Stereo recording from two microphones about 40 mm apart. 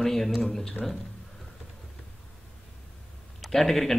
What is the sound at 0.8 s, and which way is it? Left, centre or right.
Speech, left.